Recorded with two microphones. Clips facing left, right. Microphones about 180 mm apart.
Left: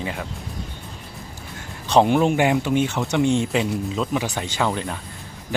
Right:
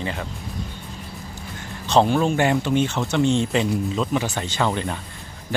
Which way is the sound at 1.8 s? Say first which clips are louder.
Left 1 dB; 15° left (ahead or behind).